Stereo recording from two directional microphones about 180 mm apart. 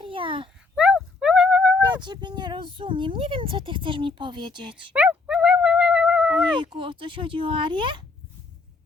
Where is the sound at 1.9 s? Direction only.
25° right (ahead or behind).